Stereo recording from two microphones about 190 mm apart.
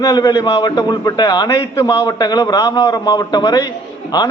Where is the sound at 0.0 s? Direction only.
20° left (ahead or behind).